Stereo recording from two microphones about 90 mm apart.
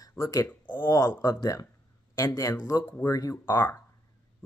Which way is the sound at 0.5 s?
25° left (ahead or behind).